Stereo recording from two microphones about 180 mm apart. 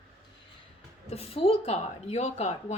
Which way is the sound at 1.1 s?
35° left (ahead or behind).